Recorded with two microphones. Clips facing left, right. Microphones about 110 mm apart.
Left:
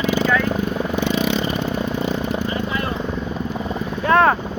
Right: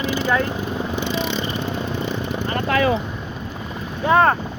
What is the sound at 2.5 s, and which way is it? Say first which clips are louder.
Vehicle: right 5 dB; 90° right.